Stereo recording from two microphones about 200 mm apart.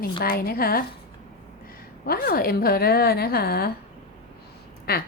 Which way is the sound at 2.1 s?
50° left (ahead or behind).